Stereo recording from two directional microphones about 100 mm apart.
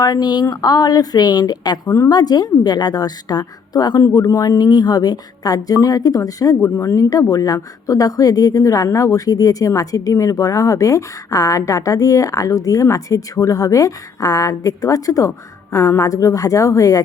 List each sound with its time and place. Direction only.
0.0 s a woman's voice: 40° left (ahead or behind)